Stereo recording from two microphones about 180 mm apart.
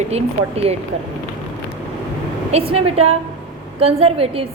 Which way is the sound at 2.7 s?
35° right (ahead or behind).